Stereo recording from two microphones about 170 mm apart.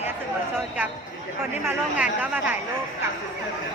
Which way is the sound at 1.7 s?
10° right (ahead or behind).